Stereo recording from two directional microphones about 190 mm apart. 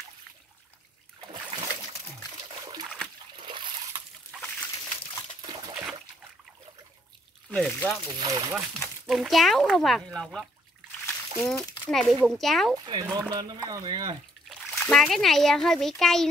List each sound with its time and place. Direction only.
1.3 s boat: 25° right (ahead or behind)
3.3 s trickle: 25° right (ahead or behind)
7.5 s speech: centre (ahead or behind)
8.2 s speech: 20° right (ahead or behind)
8.7 s speech: centre (ahead or behind)
11.1 s splash: 5° left (ahead or behind)
11.9 s speech: centre (ahead or behind)
12.7 s speech: 20° right (ahead or behind)
14.9 s speech: centre (ahead or behind)